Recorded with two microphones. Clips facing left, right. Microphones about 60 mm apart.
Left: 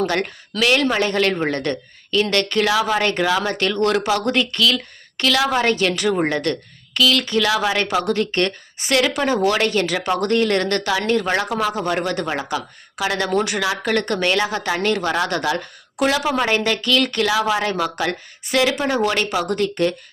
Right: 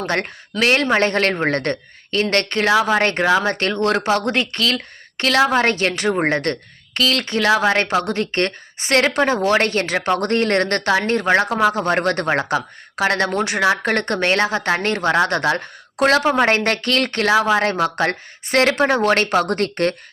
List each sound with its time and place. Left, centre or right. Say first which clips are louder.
0.6 s speech: right 1 dB; right
11.7 s speech: right 3 dB; right
13.3 s speech: right 2 dB; right